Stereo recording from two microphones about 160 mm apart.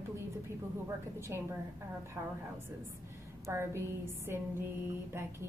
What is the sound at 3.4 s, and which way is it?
A woman's voice, 15° right (ahead or behind).